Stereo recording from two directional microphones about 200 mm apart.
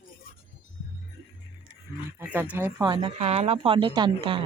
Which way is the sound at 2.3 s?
10° right (ahead or behind).